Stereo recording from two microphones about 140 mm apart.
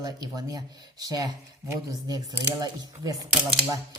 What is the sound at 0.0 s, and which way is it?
Speech, 25° right (ahead or behind).